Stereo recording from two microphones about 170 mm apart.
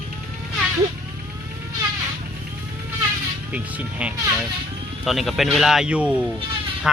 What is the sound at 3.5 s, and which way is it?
Speech, 10° right (ahead or behind).